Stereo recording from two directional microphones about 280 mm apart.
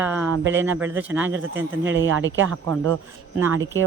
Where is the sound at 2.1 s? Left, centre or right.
Right.